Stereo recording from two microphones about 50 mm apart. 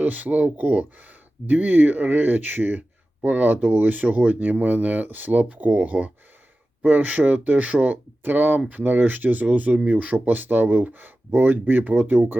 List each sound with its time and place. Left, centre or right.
0.0 s speech: right